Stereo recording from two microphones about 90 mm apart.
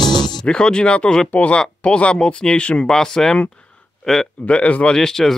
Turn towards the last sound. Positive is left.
turn(degrees=5)  # may be behind; listen again after turning